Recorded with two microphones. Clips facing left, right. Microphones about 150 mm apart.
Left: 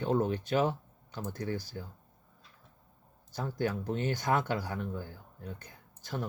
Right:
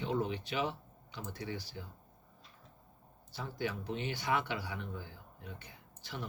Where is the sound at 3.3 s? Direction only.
45° left (ahead or behind).